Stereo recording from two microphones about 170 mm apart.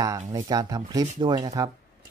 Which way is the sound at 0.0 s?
20° right (ahead or behind).